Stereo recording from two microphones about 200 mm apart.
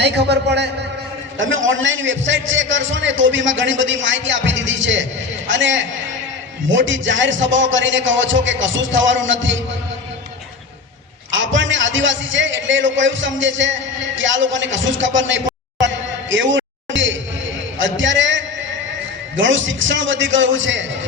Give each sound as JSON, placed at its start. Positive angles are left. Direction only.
{"t": 0.0, "sound": "a man's voice", "side_deg": -60}
{"t": 1.4, "sound": "a man's voice", "side_deg": -75}
{"t": 11.3, "sound": "a man's voice", "side_deg": -70}
{"t": 16.3, "sound": "a sound", "side_deg": -70}
{"t": 17.7, "sound": "a man's voice", "side_deg": -70}